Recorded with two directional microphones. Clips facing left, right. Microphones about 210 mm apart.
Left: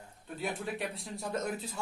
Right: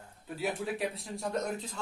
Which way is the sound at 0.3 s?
5° right (ahead or behind).